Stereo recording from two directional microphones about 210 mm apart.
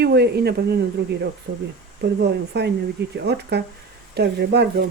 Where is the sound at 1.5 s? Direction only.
60° right (ahead or behind).